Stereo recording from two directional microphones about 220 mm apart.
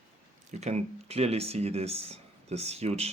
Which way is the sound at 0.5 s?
30° right (ahead or behind).